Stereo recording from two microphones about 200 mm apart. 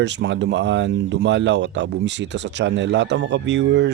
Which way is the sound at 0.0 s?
60° right (ahead or behind).